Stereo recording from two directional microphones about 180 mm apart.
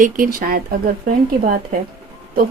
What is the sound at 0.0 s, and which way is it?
Speech, 50° right (ahead or behind).